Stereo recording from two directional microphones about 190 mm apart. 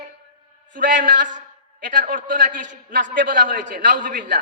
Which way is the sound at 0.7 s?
45° right (ahead or behind).